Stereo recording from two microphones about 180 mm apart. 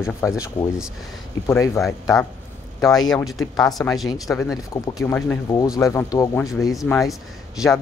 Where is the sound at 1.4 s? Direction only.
15° left (ahead or behind).